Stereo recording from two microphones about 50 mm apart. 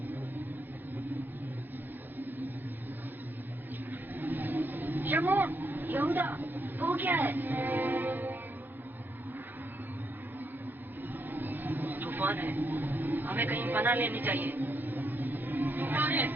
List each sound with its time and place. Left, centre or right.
4.1 s vehicle: right
11.3 s vehicle: right